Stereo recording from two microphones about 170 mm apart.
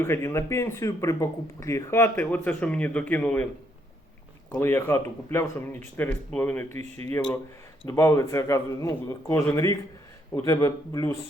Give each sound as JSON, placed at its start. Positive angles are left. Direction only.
{"t": 0.0, "sound": "speech", "side_deg": 15}
{"t": 4.5, "sound": "speech", "side_deg": 10}
{"t": 6.7, "sound": "speech", "side_deg": -40}
{"t": 7.9, "sound": "speech", "side_deg": 15}